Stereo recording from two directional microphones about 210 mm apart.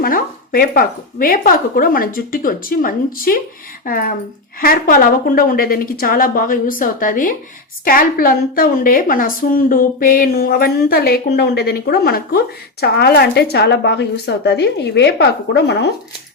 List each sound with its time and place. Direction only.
0.0 s a woman's voice: 45° left (ahead or behind)